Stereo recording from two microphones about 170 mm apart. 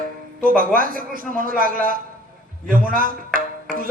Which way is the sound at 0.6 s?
55° right (ahead or behind).